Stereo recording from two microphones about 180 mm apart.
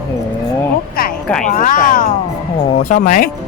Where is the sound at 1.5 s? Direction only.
45° left (ahead or behind).